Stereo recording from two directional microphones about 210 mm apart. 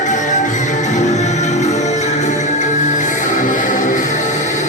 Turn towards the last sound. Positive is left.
turn(degrees=35)  # may be behind; listen again after turning